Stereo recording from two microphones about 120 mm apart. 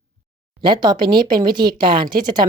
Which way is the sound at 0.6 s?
35° right (ahead or behind).